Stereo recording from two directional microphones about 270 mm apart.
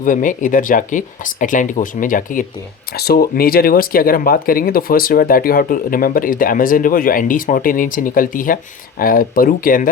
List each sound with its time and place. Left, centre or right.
0.0 s speech: left